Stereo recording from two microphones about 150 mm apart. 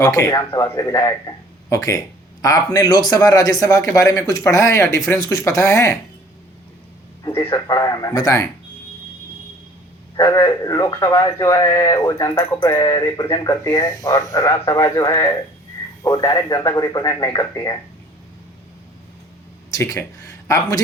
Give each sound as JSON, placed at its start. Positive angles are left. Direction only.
{"t": 0.0, "sound": "speech", "side_deg": 20}
{"t": 7.3, "sound": "speech", "side_deg": 25}
{"t": 10.2, "sound": "speech", "side_deg": 25}
{"t": 19.7, "sound": "speech", "side_deg": 20}